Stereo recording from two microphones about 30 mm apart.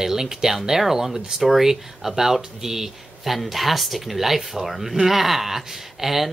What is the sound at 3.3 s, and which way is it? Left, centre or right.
Speech, centre.